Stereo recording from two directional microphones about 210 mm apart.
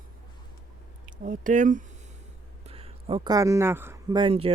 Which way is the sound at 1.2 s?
40° right (ahead or behind).